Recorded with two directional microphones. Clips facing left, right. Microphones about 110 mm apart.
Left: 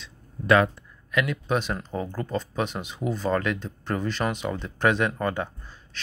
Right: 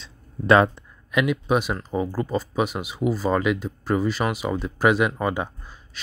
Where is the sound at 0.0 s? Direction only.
30° right (ahead or behind).